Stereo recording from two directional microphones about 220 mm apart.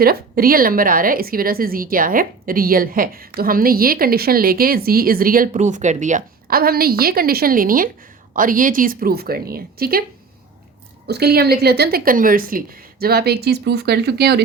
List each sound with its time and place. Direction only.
0.0 s a woman's voice: 40° right (ahead or behind)
11.0 s a woman's voice: 45° right (ahead or behind)